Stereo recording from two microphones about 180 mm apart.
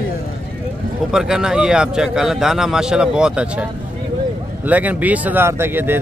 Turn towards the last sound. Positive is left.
turn(degrees=-10)  # may be behind; listen again after turning